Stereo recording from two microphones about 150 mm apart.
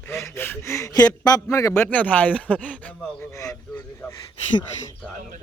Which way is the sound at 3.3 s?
20° left (ahead or behind).